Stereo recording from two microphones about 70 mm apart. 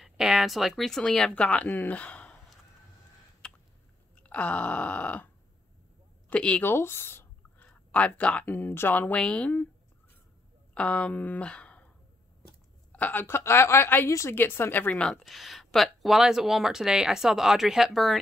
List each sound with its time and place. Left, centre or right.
0.0 s speech: centre
1.3 s speech: centre
3.4 s a sound: centre
4.2 s groan: centre
6.2 s speech: centre
6.6 s speech: left
7.5 s speech: centre
10.7 s speech: centre
12.9 s a woman's voice: left
13.4 s speech: left
14.9 s speech: centre